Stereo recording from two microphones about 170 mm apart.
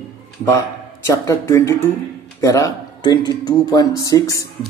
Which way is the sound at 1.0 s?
15° left (ahead or behind).